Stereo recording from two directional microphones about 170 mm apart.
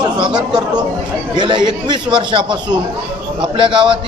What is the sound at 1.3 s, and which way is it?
A man's voice, 25° right (ahead or behind).